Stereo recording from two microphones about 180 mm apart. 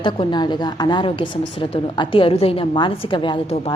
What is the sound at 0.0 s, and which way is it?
A woman's voice, 25° left (ahead or behind).